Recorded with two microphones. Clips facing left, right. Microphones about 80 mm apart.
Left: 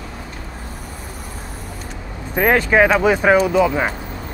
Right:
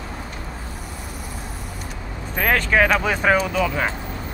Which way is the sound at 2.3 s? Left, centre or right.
Centre.